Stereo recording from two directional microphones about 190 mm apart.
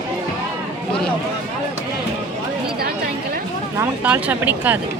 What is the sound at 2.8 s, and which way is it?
Chatter, 50° right (ahead or behind).